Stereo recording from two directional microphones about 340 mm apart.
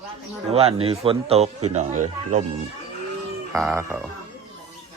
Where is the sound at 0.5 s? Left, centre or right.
Centre.